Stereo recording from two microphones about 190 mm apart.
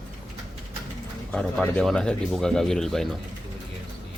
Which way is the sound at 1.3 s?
5° left (ahead or behind).